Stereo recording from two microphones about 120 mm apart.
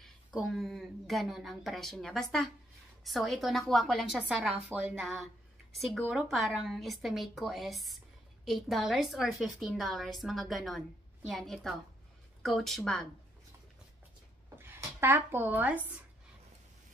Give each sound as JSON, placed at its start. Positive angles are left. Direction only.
{"t": 0.0, "sound": "a woman's voice", "side_deg": 0}
{"t": 14.6, "sound": "speech", "side_deg": -20}